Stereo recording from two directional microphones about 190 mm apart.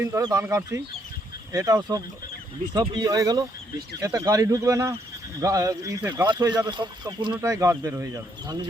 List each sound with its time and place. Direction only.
0.0 s speech: 15° right (ahead or behind)
6.2 s speech: 25° right (ahead or behind)